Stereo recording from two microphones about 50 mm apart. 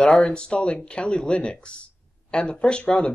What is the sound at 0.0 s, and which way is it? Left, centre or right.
Speech, centre.